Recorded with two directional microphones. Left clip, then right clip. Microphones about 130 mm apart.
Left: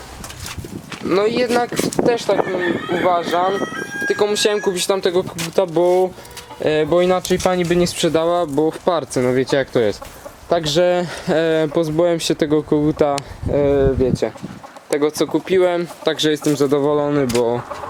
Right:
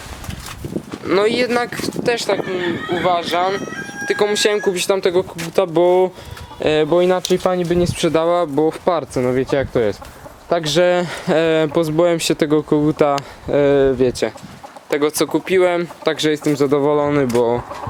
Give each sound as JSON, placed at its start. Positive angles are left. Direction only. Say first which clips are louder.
{"t": 1.0, "sound": "speech", "louder": "right 1 dB", "side_deg": -10}
{"t": 4.0, "sound": "speech", "louder": "right 1 dB", "side_deg": -5}
{"t": 6.9, "sound": "speech", "louder": "even", "side_deg": 5}
{"t": 7.4, "sound": "speech", "louder": "even", "side_deg": 25}
{"t": 7.9, "sound": "speech", "louder": "right 1 dB", "side_deg": 5}